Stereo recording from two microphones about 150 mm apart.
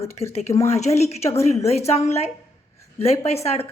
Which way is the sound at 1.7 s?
45° left (ahead or behind).